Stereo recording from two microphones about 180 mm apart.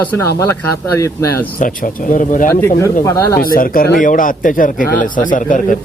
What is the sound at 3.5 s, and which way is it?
Speech, 50° left (ahead or behind).